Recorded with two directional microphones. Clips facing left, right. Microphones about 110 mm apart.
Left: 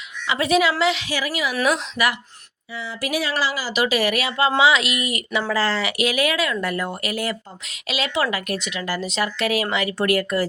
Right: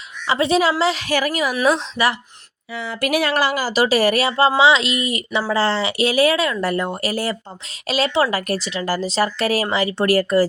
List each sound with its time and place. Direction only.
0.3 s speech: 30° right (ahead or behind)
1.0 s speech: 50° right (ahead or behind)
1.6 s speech: 30° right (ahead or behind)
2.7 s speech: 65° right (ahead or behind)
3.7 s speech: 35° right (ahead or behind)